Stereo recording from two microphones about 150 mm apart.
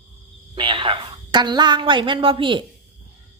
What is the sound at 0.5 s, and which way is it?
A woman's voice, 35° right (ahead or behind).